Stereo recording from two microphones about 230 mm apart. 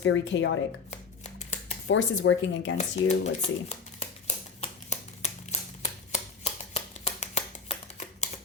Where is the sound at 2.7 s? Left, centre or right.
Left.